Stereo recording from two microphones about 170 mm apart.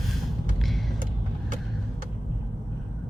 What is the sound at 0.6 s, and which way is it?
Vehicle, centre (ahead or behind).